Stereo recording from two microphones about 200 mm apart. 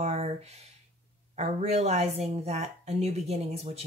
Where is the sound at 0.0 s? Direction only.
30° right (ahead or behind).